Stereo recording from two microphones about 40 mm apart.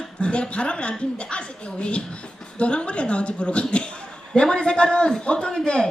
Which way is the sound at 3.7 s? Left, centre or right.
Left.